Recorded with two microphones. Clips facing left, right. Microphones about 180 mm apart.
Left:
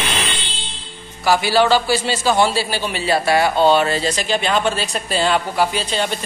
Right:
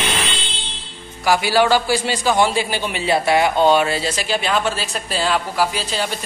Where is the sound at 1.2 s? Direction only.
10° right (ahead or behind).